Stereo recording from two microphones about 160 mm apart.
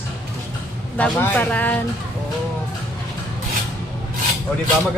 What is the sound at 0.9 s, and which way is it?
Speech, 10° left (ahead or behind).